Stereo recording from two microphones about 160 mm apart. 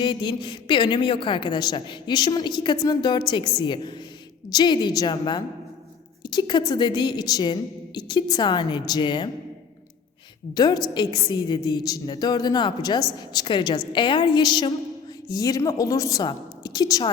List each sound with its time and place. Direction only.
0.0 s a woman's voice: 30° left (ahead or behind)
10.5 s a woman's voice: 25° left (ahead or behind)